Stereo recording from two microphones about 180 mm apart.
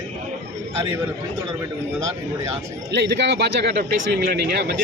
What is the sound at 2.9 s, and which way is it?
Speech, 75° right (ahead or behind).